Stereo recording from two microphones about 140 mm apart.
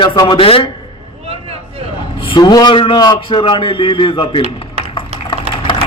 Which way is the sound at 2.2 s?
35° left (ahead or behind).